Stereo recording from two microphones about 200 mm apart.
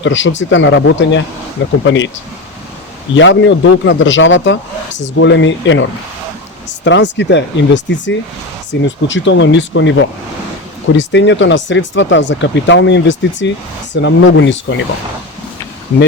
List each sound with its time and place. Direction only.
0.0 s speech: 70° left (ahead or behind)
3.2 s speech: 65° left (ahead or behind)